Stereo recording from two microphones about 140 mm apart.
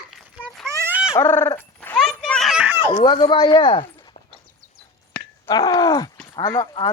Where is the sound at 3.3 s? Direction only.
30° left (ahead or behind).